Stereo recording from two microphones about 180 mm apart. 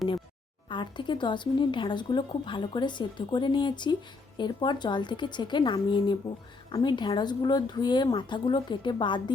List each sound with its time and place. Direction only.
0.7 s speech: 25° left (ahead or behind)